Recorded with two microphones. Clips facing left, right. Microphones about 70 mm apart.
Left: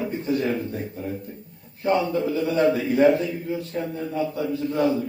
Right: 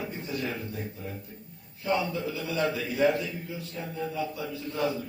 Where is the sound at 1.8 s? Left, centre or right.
Left.